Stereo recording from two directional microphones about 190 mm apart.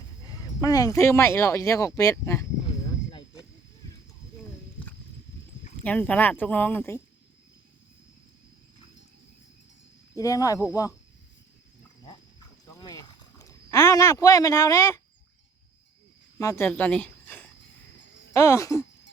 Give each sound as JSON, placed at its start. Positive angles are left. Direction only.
{"t": 0.3, "sound": "speech", "side_deg": 20}
{"t": 2.6, "sound": "a sound", "side_deg": 25}
{"t": 5.8, "sound": "speech", "side_deg": 5}
{"t": 10.2, "sound": "speech", "side_deg": 20}
{"t": 12.6, "sound": "a sound", "side_deg": 20}
{"t": 16.4, "sound": "speech", "side_deg": 15}